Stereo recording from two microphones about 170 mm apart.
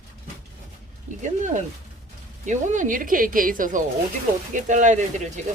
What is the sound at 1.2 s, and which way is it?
Speech, 45° right (ahead or behind).